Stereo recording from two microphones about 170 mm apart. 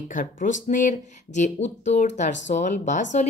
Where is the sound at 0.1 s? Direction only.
50° left (ahead or behind).